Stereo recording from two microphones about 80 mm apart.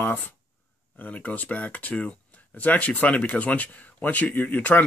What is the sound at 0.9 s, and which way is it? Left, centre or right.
Speech, centre.